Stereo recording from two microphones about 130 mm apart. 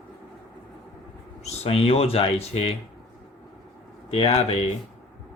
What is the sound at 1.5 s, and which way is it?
Speech, 50° left (ahead or behind).